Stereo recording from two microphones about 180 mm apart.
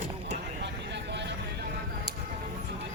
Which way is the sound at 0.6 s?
70° right (ahead or behind).